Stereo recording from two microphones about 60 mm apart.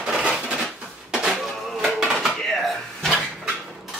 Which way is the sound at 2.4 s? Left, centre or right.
Centre.